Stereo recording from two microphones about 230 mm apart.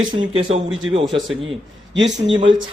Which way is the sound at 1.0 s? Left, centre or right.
Centre.